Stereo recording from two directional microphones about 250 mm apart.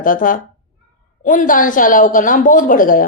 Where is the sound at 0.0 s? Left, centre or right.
Left.